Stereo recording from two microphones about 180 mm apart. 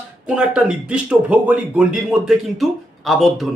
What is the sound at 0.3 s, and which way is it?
Speech, 5° right (ahead or behind).